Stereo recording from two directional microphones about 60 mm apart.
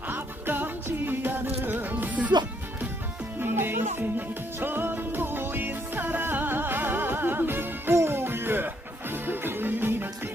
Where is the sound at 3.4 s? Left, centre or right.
Right.